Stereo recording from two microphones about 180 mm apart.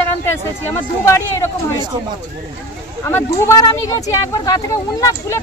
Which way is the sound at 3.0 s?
15° left (ahead or behind).